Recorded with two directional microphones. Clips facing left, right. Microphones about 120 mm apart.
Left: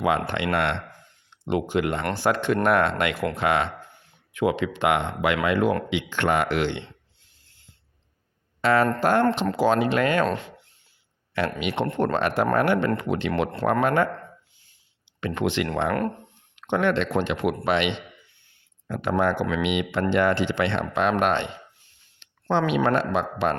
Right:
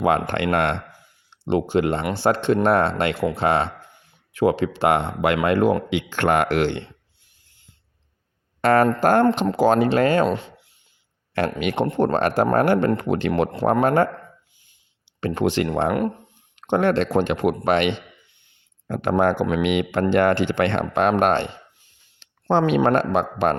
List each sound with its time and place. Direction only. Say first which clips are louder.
0.0 s speech: right 3 dB; 45° right (ahead or behind)
1.3 s speech: right 4 dB; 30° right (ahead or behind)
7.4 s a sound: left 2 dB; 15° right (ahead or behind)
8.6 s speech: right 4 dB; 45° right (ahead or behind)
10.2 s a sound: right 3 dB; 10° right (ahead or behind)
11.3 s speech: right 4 dB; 45° right (ahead or behind)
15.4 s speech: right 4 dB; 35° right (ahead or behind)
15.9 s speech: right 3 dB; 10° right (ahead or behind)
16.6 s speech: right 3 dB; 35° right (ahead or behind)